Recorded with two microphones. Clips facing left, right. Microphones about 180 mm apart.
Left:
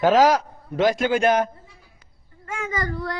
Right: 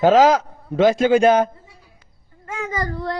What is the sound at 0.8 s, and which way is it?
Speech, 25° right (ahead or behind).